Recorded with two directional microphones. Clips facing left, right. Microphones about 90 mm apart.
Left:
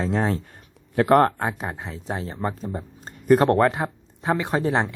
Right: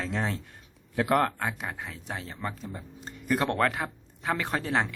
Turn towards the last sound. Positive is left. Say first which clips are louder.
# left 6 dB
turn(degrees=25)  # may be behind; listen again after turning